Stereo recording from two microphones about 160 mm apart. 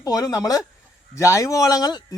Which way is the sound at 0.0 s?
20° left (ahead or behind).